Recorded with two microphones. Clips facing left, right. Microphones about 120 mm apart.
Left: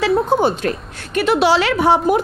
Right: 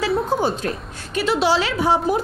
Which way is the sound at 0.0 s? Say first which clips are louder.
Left 5 dB; 70° left (ahead or behind).